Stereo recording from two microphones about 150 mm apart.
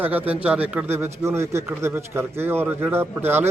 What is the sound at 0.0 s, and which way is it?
Speech, 10° right (ahead or behind).